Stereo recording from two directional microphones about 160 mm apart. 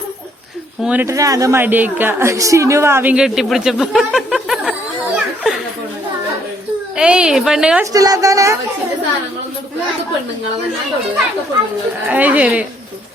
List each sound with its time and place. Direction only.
0.8 s a woman's voice: 10° right (ahead or behind)
5.1 s a sound: 5° right (ahead or behind)
6.9 s a woman's voice: 5° right (ahead or behind)
7.9 s a woman's voice: 20° right (ahead or behind)
12.0 s a woman's voice: 10° right (ahead or behind)